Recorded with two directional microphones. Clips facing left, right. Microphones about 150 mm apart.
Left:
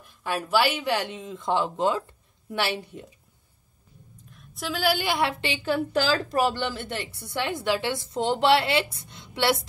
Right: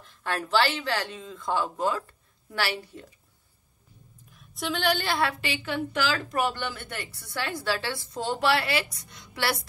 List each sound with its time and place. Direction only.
0.0 s a woman's voice: 10° left (ahead or behind)
4.3 s a woman's voice: centre (ahead or behind); by 9.7 s 20° left (ahead or behind)